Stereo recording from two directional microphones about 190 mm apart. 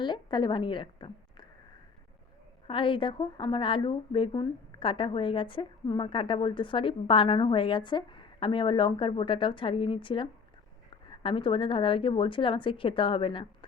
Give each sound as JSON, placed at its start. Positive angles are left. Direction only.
{"t": 0.0, "sound": "a woman's voice", "side_deg": 25}
{"t": 2.6, "sound": "a woman's voice", "side_deg": 25}